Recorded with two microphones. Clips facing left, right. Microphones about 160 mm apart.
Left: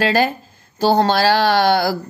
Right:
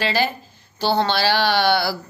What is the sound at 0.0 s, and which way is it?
A woman's voice, 45° left (ahead or behind).